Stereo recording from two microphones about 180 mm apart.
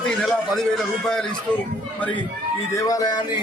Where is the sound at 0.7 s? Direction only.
5° left (ahead or behind).